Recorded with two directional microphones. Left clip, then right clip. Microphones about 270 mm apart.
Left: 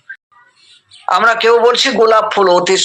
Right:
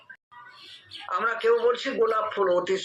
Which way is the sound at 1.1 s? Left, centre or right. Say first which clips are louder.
Left 14 dB; left.